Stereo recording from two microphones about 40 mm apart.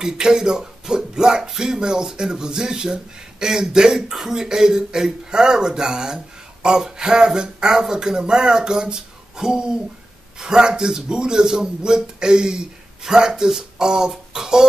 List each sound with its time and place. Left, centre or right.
0.0 s speech: centre